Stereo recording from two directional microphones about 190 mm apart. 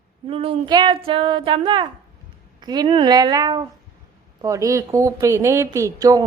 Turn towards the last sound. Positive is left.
turn(degrees=-20)  # may be behind; listen again after turning